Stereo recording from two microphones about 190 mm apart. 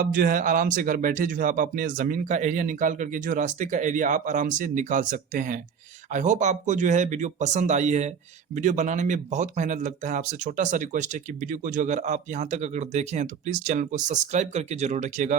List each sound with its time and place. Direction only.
0.0 s speech: 45° right (ahead or behind)